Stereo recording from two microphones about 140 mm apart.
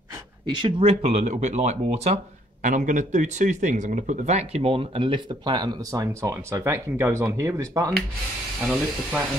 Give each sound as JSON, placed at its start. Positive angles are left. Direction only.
{"t": 0.5, "sound": "speech", "side_deg": -35}
{"t": 2.6, "sound": "speech", "side_deg": -65}
{"t": 8.5, "sound": "speech", "side_deg": -5}